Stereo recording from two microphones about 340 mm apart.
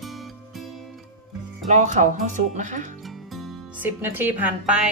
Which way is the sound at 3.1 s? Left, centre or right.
Centre.